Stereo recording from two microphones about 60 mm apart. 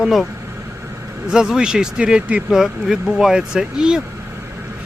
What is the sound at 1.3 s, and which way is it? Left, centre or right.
Speech, centre.